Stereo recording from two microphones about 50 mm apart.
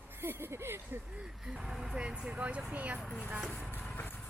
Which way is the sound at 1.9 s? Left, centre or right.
Centre.